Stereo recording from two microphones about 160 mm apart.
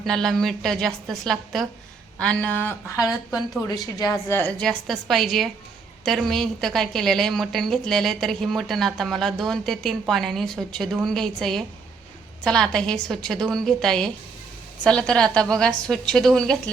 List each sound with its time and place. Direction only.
0.0 s a woman's voice: centre (ahead or behind)
3.0 s a woman's voice: centre (ahead or behind)
3.9 s speech: 20° left (ahead or behind)
4.6 s a woman's voice: centre (ahead or behind)